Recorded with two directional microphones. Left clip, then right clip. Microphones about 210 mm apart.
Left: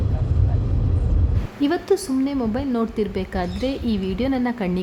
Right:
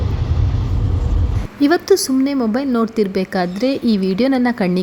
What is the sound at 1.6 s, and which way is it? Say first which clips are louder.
A woman's voice: right 7 dB; 30° right (ahead or behind).